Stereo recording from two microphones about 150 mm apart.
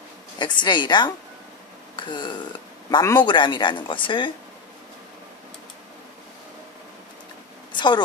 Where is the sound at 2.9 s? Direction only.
25° left (ahead or behind).